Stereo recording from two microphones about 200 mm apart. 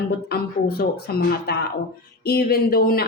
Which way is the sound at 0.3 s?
50° left (ahead or behind).